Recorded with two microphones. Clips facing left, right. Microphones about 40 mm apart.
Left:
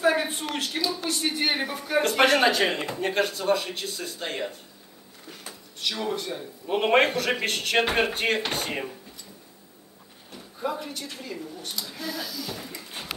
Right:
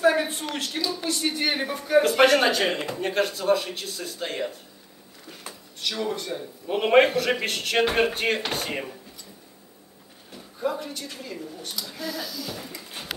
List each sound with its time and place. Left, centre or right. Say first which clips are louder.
0.0 s a sound: right 2 dB; centre
0.6 s speech: left 1 dB; centre
10.3 s speech: right 2 dB; centre